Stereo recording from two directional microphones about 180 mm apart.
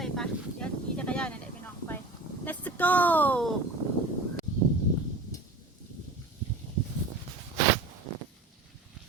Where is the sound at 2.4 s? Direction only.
10° left (ahead or behind).